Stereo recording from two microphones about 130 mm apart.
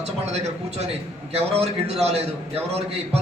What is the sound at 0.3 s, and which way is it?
A man's voice, 55° right (ahead or behind).